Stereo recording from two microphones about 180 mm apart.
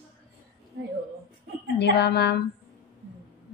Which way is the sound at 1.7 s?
65° left (ahead or behind).